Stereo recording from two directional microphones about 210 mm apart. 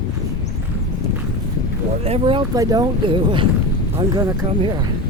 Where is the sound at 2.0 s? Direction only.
25° right (ahead or behind).